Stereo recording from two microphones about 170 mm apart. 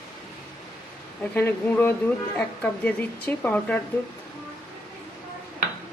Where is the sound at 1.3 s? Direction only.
10° left (ahead or behind).